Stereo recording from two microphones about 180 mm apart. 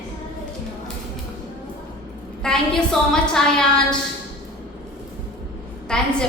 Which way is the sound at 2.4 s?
5° left (ahead or behind).